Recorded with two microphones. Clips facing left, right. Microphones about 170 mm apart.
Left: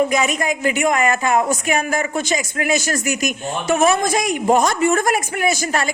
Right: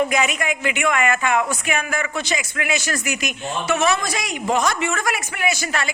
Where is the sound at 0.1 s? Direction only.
40° left (ahead or behind).